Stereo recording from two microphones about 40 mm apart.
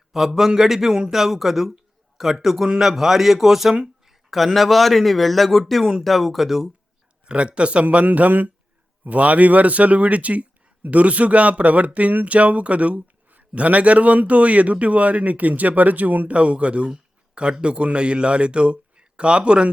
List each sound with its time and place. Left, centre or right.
0.3 s speech: centre
7.3 s speech: right
8.0 s speech: right